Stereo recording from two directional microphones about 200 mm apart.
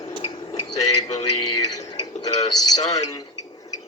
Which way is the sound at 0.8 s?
35° left (ahead or behind).